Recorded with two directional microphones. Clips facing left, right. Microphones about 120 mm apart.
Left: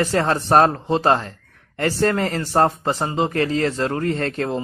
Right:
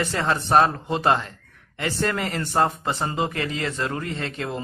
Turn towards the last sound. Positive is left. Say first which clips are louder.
# left 7 dB
turn(degrees=40)  # may be behind; listen again after turning